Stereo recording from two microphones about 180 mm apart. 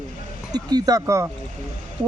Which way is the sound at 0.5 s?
20° right (ahead or behind).